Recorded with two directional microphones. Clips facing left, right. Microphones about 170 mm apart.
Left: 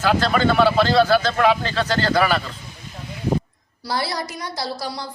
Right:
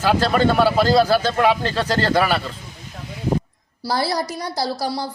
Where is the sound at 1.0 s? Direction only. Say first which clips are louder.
Even; 35° right (ahead or behind).